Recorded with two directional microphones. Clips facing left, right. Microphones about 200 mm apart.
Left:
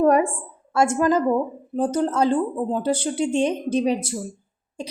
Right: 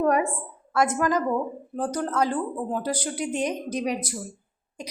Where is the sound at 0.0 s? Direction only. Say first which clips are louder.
Left 5 dB; 35° left (ahead or behind).